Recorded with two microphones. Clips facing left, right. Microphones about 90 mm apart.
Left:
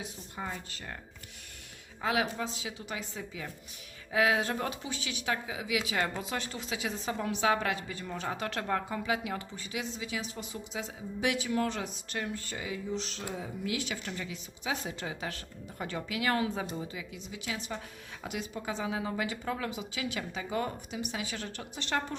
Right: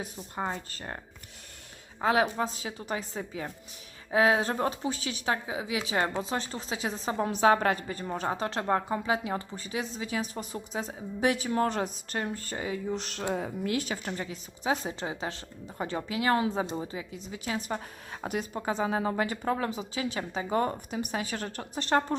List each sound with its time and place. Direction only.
0.0 s speech: 45° right (ahead or behind)
2.0 s speech: 35° right (ahead or behind)